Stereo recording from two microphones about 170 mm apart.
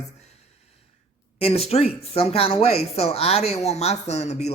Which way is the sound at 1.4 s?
35° left (ahead or behind).